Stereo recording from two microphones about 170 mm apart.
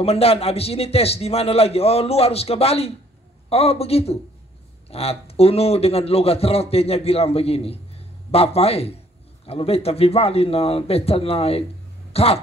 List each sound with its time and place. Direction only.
0.0 s a man's voice: 35° left (ahead or behind)